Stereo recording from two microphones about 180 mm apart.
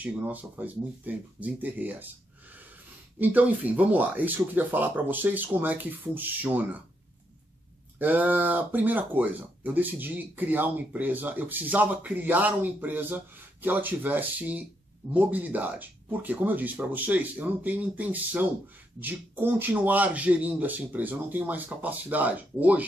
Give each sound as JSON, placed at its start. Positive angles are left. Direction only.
{"t": 0.0, "sound": "speech", "side_deg": -10}
{"t": 3.2, "sound": "speech", "side_deg": -10}
{"t": 8.0, "sound": "speech", "side_deg": -10}